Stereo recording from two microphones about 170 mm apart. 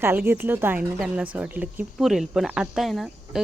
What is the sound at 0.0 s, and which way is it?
Speech, 15° right (ahead or behind).